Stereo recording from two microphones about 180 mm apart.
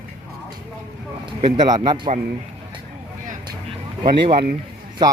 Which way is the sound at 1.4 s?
25° right (ahead or behind).